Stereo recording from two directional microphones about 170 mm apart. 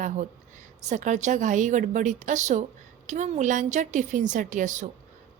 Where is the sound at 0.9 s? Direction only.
45° right (ahead or behind).